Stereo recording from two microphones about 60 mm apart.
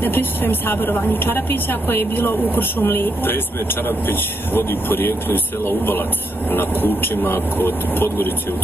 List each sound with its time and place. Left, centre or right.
0.0 s a woman's voice: left